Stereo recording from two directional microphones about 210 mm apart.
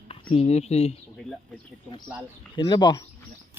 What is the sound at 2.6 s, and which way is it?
Speech, 20° left (ahead or behind).